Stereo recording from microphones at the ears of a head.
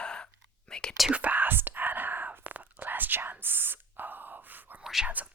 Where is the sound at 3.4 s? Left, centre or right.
Right.